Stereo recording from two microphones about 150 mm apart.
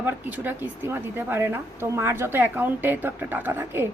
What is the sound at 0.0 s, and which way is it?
A woman's voice, 10° right (ahead or behind).